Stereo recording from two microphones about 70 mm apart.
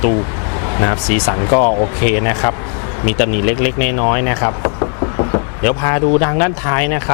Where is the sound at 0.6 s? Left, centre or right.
Left.